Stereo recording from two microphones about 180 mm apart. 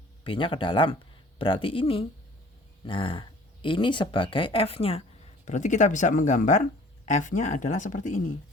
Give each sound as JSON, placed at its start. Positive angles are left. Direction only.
{"t": 0.3, "sound": "speech", "side_deg": 30}